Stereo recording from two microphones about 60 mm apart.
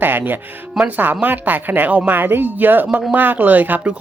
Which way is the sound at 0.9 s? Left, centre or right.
Right.